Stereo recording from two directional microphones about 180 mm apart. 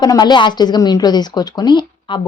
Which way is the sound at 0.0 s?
25° left (ahead or behind).